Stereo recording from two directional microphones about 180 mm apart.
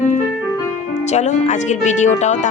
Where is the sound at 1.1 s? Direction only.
40° left (ahead or behind).